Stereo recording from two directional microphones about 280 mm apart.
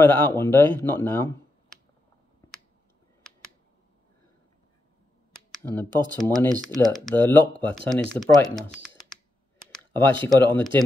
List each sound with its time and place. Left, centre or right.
0.0 s speech: centre
5.6 s speech: centre
10.2 s speech: centre